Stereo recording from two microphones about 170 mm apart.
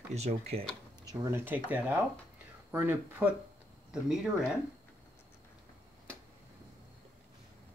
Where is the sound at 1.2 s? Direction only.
15° right (ahead or behind).